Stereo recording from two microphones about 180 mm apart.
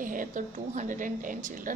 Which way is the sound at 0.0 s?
50° right (ahead or behind).